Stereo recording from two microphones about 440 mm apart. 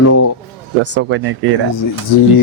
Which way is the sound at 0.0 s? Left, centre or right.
Left.